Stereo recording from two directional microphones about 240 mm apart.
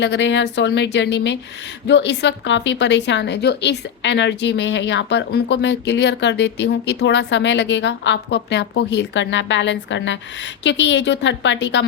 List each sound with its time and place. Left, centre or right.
0.0 s a woman's voice: left